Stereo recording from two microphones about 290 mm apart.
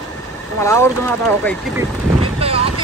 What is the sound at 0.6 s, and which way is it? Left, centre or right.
Speech, centre.